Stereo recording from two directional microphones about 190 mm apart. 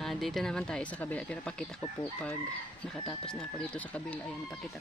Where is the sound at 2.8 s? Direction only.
5° left (ahead or behind).